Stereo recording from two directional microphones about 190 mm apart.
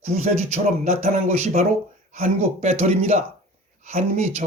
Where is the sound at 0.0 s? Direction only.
35° right (ahead or behind).